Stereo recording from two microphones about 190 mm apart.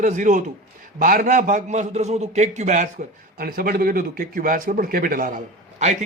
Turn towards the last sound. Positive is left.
turn(degrees=-40)  # may be behind; listen again after turning